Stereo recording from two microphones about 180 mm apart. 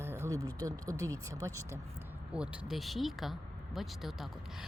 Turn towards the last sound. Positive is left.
turn(degrees=0)  # may be behind; listen again after turning